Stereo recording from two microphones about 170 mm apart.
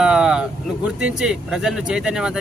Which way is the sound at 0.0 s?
5° right (ahead or behind).